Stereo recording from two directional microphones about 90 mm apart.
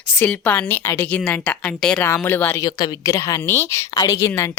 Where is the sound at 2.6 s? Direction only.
50° left (ahead or behind).